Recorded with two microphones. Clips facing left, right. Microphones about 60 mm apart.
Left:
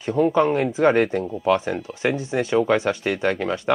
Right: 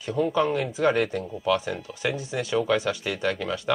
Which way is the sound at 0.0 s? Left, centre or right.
Left.